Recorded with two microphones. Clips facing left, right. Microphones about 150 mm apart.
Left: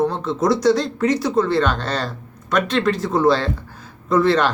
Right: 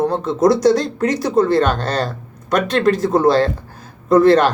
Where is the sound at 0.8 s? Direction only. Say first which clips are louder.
Right 1 dB; 40° right (ahead or behind).